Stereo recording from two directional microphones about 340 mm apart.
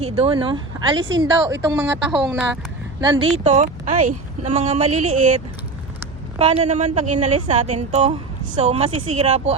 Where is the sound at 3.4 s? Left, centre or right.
Centre.